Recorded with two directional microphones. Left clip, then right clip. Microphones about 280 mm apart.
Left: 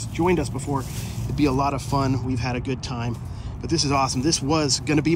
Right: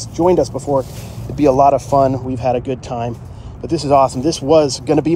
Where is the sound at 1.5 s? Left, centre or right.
Centre.